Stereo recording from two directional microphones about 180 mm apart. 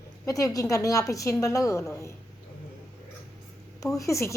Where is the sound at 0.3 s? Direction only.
20° left (ahead or behind).